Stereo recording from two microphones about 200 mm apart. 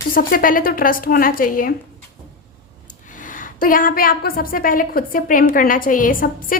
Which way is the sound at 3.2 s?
40° left (ahead or behind).